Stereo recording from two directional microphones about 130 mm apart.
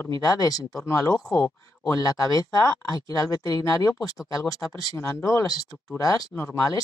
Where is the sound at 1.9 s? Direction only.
30° left (ahead or behind).